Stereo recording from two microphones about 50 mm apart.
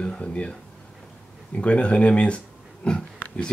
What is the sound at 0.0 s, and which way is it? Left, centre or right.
Speech, left.